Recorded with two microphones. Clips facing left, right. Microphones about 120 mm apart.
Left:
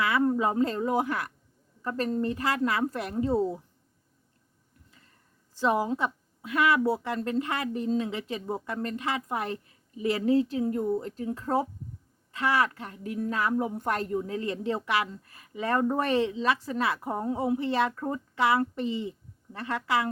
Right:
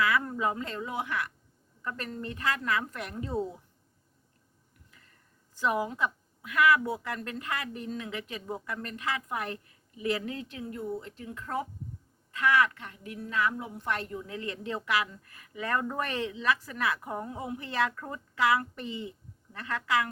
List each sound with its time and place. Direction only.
0.0 s a woman's voice: 25° left (ahead or behind)
5.5 s a woman's voice: 30° left (ahead or behind)